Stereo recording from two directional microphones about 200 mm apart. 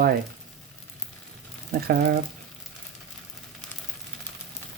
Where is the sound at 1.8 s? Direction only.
50° right (ahead or behind).